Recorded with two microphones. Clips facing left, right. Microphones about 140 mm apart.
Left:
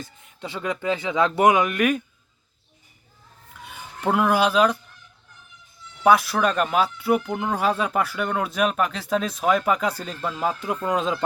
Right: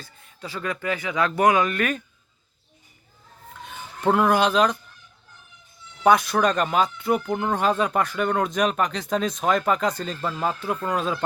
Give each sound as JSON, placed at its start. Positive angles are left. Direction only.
{"t": 0.0, "sound": "speech", "side_deg": 20}
{"t": 3.6, "sound": "speech", "side_deg": 10}
{"t": 6.0, "sound": "speech", "side_deg": 5}